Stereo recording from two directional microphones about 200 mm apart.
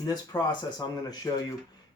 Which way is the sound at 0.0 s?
20° left (ahead or behind).